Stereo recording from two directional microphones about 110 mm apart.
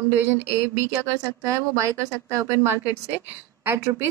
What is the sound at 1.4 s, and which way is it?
Speech, 30° right (ahead or behind).